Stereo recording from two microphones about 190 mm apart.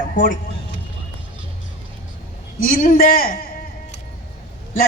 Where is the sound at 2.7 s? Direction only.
45° left (ahead or behind).